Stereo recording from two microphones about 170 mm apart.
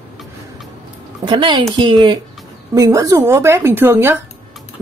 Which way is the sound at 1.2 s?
30° right (ahead or behind).